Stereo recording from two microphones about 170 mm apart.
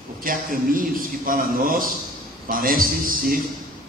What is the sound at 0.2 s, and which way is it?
A man's voice, 55° right (ahead or behind).